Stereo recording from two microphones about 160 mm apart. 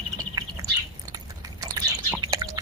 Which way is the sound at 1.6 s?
20° right (ahead or behind).